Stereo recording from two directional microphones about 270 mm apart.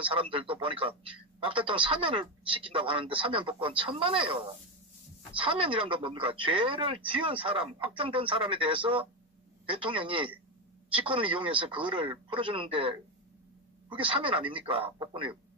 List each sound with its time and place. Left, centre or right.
0.0 s speech: centre